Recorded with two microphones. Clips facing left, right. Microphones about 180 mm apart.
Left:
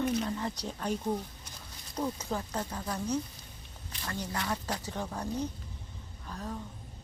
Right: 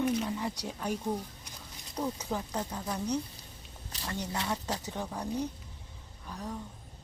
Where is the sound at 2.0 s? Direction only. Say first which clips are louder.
Even; 10° right (ahead or behind).